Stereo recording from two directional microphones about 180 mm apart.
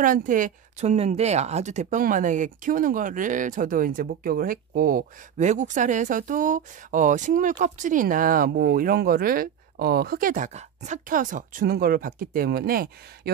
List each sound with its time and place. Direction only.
0.0 s speech: 45° right (ahead or behind)